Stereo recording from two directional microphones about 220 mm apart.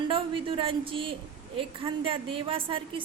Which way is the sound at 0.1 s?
25° right (ahead or behind).